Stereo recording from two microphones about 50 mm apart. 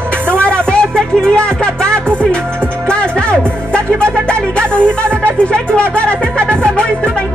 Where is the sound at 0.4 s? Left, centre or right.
Left.